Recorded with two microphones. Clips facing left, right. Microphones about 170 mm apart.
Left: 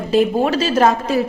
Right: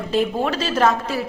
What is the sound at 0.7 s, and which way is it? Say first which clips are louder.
Speech: left 2 dB; 30° left (ahead or behind).